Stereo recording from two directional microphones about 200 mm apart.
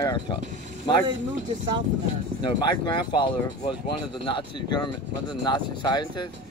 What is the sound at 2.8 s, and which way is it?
Speech, 25° left (ahead or behind).